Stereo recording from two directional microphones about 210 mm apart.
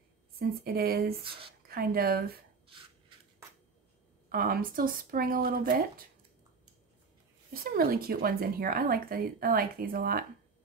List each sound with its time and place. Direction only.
0.4 s speech: 45° right (ahead or behind)
4.3 s speech: 45° right (ahead or behind)
7.6 s speech: 45° right (ahead or behind)